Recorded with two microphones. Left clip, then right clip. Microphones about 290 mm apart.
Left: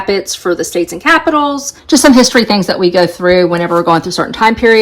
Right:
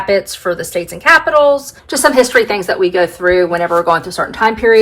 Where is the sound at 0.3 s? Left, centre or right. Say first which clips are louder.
Left 3 dB; left.